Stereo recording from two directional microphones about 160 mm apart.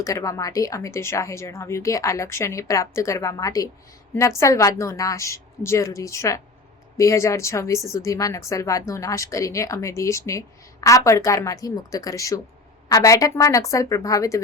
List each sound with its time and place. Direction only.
0.0 s a woman's voice: 20° left (ahead or behind)